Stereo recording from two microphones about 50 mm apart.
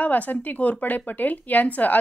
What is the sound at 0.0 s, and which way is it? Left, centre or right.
A woman's voice, left.